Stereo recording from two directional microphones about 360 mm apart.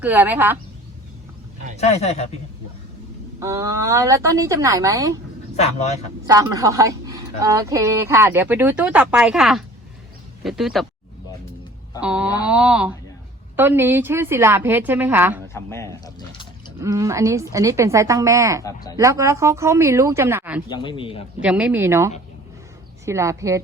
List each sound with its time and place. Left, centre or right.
0.0 s a woman's voice: centre
1.8 s a man's voice: centre
3.4 s a woman's voice: centre
5.5 s a man's voice: centre
6.2 s a woman's voice: centre
11.9 s a woman's voice: centre
15.5 s mechanisms: centre
16.8 s a woman's voice: centre
20.7 s a man's voice: centre
21.4 s a woman's voice: centre